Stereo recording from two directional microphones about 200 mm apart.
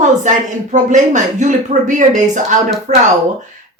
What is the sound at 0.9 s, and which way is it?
A woman's voice, 35° right (ahead or behind).